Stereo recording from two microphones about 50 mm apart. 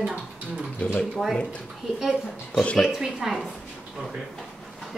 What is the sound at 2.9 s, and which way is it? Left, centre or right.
Speech, centre.